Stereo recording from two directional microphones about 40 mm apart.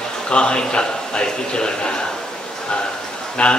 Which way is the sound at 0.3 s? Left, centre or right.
Left.